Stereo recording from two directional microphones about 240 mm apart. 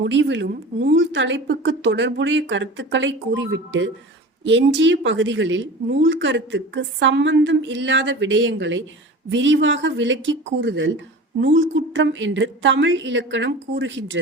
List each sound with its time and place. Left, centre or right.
0.0 s speech: right